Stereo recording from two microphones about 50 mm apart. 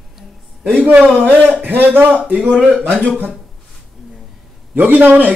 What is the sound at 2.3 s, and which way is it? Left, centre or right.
Speech, right.